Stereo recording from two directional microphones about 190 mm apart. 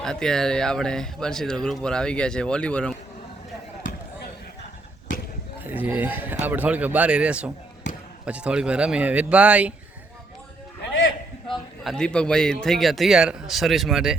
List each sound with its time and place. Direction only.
0.0 s speech: 5° left (ahead or behind)
5.5 s a man's voice: 10° right (ahead or behind)
7.9 s basketball bounce: 70° left (ahead or behind)
8.2 s a man's voice: 5° right (ahead or behind)
11.4 s speech: centre (ahead or behind)